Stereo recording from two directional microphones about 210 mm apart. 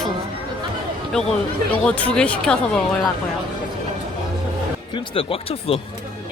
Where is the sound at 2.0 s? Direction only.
5° left (ahead or behind).